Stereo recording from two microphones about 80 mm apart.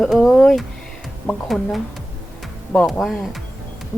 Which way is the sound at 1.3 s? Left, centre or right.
Centre.